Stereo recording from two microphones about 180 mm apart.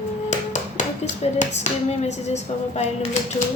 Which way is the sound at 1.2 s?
35° left (ahead or behind).